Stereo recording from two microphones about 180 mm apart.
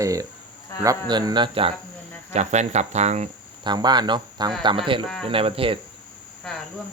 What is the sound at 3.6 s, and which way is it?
Speech, 25° right (ahead or behind).